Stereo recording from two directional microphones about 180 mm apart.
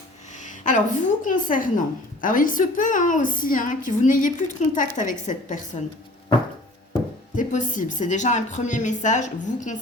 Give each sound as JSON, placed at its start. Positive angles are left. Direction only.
{"t": 0.3, "sound": "a woman's voice", "side_deg": 45}
{"t": 7.3, "sound": "a woman's voice", "side_deg": 45}